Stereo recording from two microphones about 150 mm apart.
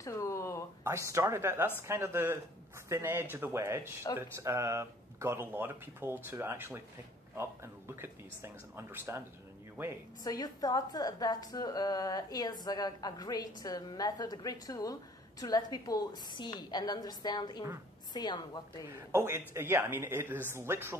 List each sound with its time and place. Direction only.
0.0 s a sound: 20° left (ahead or behind)
0.8 s speech: 20° right (ahead or behind)
4.1 s a woman's voice: 25° left (ahead or behind)
4.4 s speech: 20° right (ahead or behind)
10.2 s a woman's voice: 25° left (ahead or behind)
18.9 s speech: 15° right (ahead or behind)